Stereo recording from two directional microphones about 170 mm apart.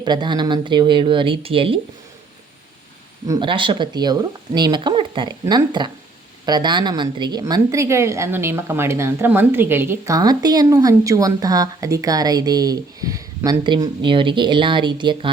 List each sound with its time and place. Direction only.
0.0 s a woman's voice: 25° right (ahead or behind)
3.2 s a woman's voice: 25° right (ahead or behind)